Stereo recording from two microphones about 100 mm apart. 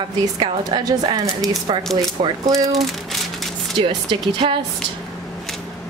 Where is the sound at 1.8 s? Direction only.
5° left (ahead or behind).